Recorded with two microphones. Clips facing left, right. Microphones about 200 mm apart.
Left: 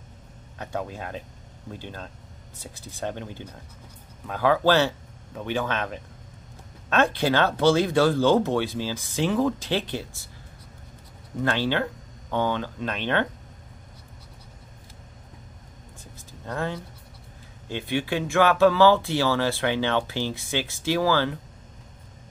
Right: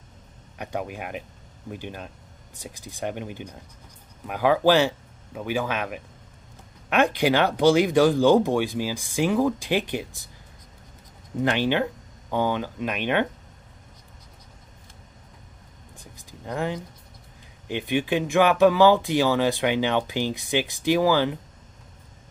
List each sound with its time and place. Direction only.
0.6 s speech: 15° right (ahead or behind)
11.4 s speech: 15° right (ahead or behind)
16.0 s a sound: 15° right (ahead or behind)
17.6 s speech: 15° right (ahead or behind)